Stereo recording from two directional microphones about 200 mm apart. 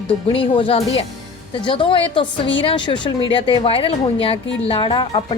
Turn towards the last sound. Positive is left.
turn(degrees=25)  # may be behind; listen again after turning